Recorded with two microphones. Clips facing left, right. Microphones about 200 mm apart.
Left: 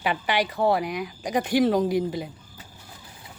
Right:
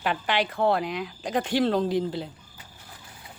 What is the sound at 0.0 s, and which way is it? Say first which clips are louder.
Speech: left 1 dB; 10° left (ahead or behind).